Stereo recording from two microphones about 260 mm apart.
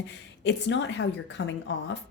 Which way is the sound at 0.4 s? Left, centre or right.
Left.